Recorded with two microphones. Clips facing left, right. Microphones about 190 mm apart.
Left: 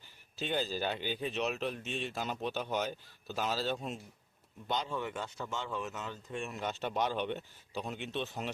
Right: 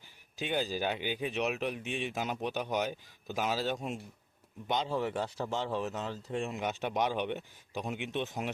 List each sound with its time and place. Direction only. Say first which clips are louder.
0.3 s speech: right 2 dB; 10° right (ahead or behind)
4.9 s speech: right 5 dB; 35° right (ahead or behind)
6.6 s speech: even; 15° right (ahead or behind)